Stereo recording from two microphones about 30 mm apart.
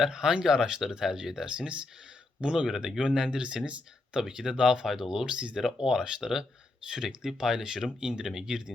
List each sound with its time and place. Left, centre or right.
0.1 s speech: right
2.6 s speech: centre
3.0 s speech: right
5.2 s speech: right
5.5 s speech: right
8.2 s speech: centre